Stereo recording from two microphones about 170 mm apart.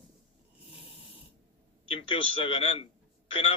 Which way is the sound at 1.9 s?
30° left (ahead or behind).